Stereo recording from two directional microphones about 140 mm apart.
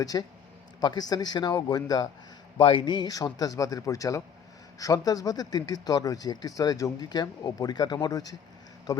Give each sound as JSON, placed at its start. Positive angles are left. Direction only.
{"t": 0.0, "sound": "speech", "side_deg": 25}